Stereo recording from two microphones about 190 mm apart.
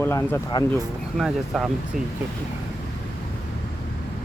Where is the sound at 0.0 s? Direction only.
15° left (ahead or behind).